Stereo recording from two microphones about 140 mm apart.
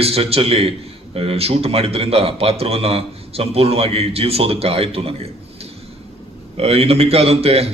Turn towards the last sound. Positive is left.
turn(degrees=-45)  # may be behind; listen again after turning